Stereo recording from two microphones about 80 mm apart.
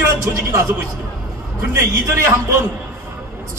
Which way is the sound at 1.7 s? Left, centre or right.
Right.